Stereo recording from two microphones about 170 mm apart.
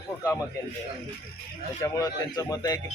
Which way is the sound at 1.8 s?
20° left (ahead or behind).